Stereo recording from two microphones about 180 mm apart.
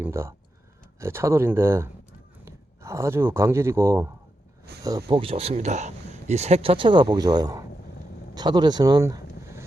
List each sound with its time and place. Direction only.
0.0 s speech: 15° right (ahead or behind)